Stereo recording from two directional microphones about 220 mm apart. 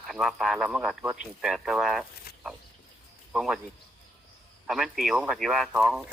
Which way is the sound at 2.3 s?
45° left (ahead or behind).